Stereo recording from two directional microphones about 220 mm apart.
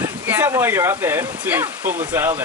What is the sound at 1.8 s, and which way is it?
Speech, 35° right (ahead or behind).